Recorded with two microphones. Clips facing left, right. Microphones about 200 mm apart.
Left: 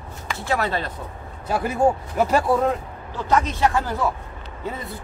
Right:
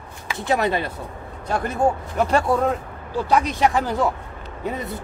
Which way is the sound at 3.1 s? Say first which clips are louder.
Right 2 dB; 10° right (ahead or behind).